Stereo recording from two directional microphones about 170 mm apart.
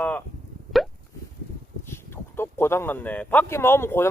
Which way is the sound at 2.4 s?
15° left (ahead or behind).